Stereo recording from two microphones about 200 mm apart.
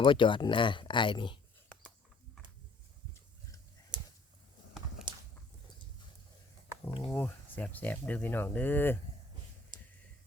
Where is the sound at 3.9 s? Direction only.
20° right (ahead or behind).